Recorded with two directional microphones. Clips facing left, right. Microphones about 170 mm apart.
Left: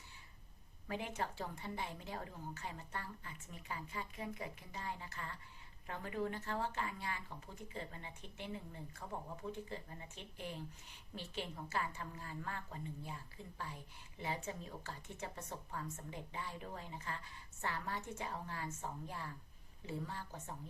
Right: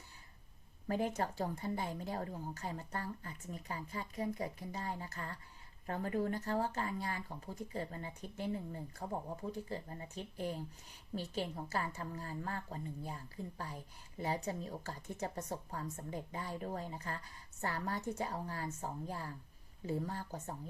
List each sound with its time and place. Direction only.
0.9 s speech: 40° right (ahead or behind)